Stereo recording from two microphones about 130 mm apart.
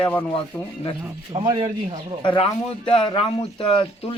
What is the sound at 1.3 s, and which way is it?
Speech, 40° right (ahead or behind).